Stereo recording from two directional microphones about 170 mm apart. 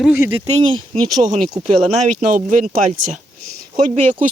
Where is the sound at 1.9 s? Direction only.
45° right (ahead or behind).